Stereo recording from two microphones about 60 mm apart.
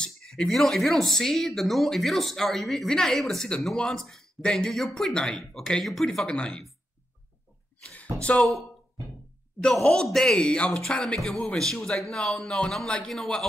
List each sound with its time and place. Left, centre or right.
0.0 s a man's voice: centre
6.2 s a man's voice: centre
7.9 s speech: left
9.8 s a man's voice: centre